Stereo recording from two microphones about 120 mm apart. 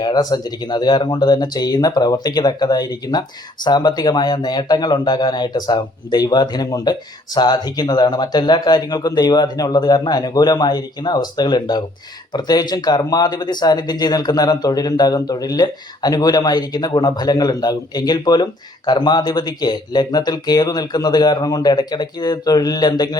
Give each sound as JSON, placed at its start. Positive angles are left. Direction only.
{"t": 0.0, "sound": "speech", "side_deg": 35}